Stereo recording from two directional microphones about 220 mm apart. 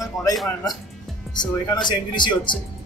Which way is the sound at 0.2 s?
15° left (ahead or behind).